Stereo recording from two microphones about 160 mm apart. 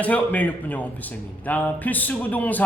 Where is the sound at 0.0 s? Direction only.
10° left (ahead or behind).